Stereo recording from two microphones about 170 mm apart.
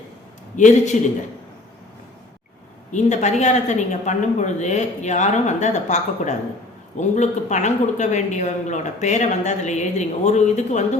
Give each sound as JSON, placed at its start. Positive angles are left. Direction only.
{"t": 0.5, "sound": "speech", "side_deg": 45}
{"t": 2.9, "sound": "speech", "side_deg": 45}